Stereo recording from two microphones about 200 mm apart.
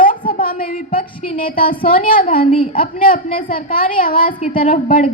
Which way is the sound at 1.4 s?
45° left (ahead or behind).